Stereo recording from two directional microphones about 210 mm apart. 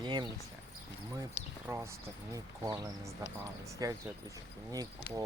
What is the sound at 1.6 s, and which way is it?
Speech, 10° right (ahead or behind).